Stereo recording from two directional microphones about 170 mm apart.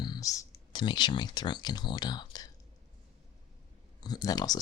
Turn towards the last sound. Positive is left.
turn(degrees=20)  # may be behind; listen again after turning